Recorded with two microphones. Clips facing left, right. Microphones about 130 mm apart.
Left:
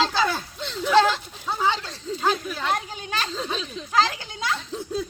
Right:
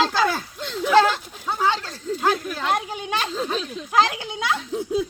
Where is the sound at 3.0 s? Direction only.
15° right (ahead or behind).